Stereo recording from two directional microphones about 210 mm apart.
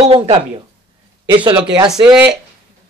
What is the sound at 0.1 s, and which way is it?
A man's voice, 20° right (ahead or behind).